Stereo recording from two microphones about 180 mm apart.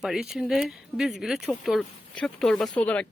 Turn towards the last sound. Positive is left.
turn(degrees=10)  # may be behind; listen again after turning